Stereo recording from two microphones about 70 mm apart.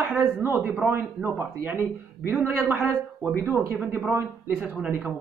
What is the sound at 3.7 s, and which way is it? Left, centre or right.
Speech, right.